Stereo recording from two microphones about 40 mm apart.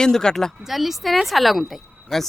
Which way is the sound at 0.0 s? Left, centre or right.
Centre.